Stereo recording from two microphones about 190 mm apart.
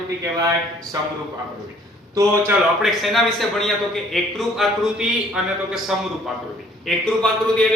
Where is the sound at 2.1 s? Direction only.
15° right (ahead or behind).